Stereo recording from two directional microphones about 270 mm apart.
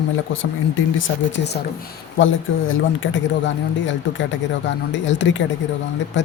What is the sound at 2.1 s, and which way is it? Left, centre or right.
Speech, left.